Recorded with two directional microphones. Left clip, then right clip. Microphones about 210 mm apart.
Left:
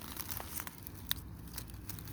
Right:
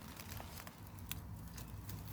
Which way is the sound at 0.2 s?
50° left (ahead or behind).